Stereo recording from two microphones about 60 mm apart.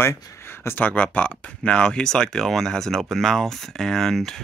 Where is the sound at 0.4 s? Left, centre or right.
Left.